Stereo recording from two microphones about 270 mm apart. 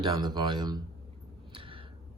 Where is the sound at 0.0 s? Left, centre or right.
Centre.